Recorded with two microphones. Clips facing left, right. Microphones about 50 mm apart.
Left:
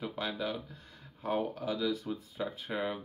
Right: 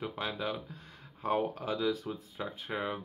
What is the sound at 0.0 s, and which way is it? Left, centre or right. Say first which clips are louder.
Speech: even; centre.